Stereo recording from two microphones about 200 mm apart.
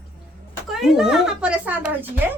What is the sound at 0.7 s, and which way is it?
A woman's voice, centre (ahead or behind).